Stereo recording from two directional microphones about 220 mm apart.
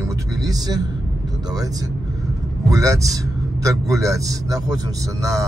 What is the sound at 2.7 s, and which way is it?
Speech, 15° right (ahead or behind).